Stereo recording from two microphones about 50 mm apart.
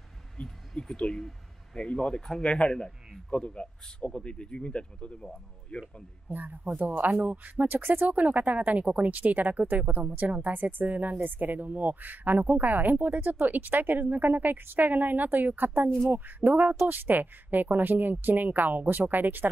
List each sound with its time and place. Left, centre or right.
0.4 s a man's voice: centre
6.2 s speech: right